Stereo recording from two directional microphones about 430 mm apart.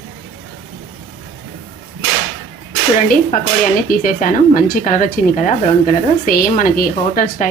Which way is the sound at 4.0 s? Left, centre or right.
Centre.